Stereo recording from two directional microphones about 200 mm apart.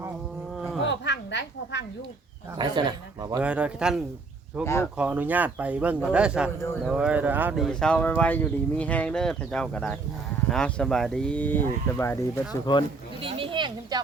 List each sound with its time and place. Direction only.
0.5 s a sound: centre (ahead or behind)
0.9 s speech: 60° left (ahead or behind)
2.6 s speech: 20° right (ahead or behind)
3.4 s speech: 5° right (ahead or behind)
4.6 s speech: 15° left (ahead or behind)
4.9 s speech: 10° right (ahead or behind); by 12.2 s 15° left (ahead or behind)
13.2 s speech: 25° right (ahead or behind)